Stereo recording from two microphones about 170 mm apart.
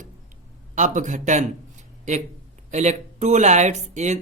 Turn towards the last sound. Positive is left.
turn(degrees=-45)  # may be behind; listen again after turning